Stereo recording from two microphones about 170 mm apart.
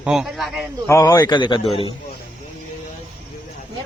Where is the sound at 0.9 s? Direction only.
20° left (ahead or behind).